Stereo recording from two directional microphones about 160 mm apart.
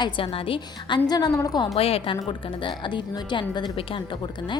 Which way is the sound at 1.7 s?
40° left (ahead or behind).